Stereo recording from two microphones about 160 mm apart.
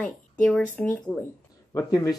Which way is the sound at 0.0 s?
5° left (ahead or behind).